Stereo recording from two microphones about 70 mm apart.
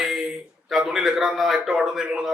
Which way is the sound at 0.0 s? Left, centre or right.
Centre.